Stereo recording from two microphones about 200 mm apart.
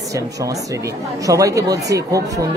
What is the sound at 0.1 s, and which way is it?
Speech, 15° right (ahead or behind).